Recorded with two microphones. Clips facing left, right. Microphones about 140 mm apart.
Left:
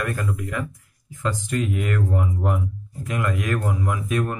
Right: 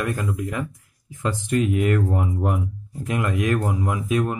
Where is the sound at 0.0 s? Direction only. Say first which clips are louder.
Right 1 dB; 25° right (ahead or behind).